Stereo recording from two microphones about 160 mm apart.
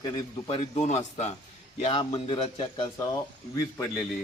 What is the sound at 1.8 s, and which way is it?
A man's voice, 35° left (ahead or behind).